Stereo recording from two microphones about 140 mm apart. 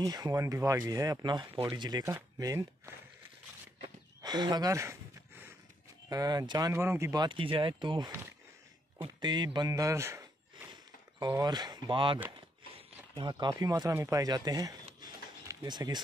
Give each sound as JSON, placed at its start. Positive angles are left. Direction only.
{"t": 0.0, "sound": "speech", "side_deg": -25}
{"t": 4.2, "sound": "speech", "side_deg": -30}
{"t": 6.0, "sound": "speech", "side_deg": -25}
{"t": 6.7, "sound": "speech", "side_deg": -15}
{"t": 7.2, "sound": "speech", "side_deg": -40}
{"t": 9.2, "sound": "speech", "side_deg": -30}
{"t": 11.1, "sound": "speech", "side_deg": -30}